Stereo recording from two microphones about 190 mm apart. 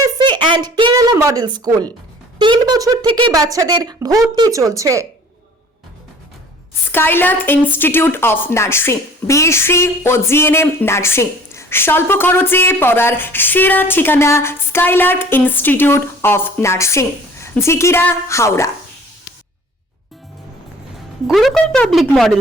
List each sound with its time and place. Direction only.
0.0 s speech: 25° right (ahead or behind)
6.9 s a woman's voice: 10° left (ahead or behind)
21.2 s speech: centre (ahead or behind)